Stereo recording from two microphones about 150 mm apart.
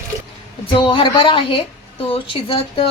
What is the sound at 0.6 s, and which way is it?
A woman's voice, 35° left (ahead or behind).